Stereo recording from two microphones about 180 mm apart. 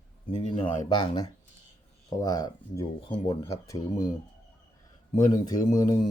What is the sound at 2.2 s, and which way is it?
Speech, 20° left (ahead or behind).